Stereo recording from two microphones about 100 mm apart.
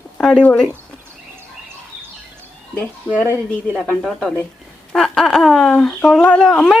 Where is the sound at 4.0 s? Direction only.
5° left (ahead or behind).